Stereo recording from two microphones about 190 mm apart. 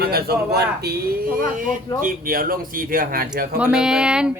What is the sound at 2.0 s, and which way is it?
Speech, 50° right (ahead or behind).